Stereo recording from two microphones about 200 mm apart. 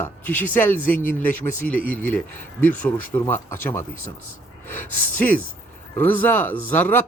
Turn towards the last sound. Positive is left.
turn(degrees=10)  # may be behind; listen again after turning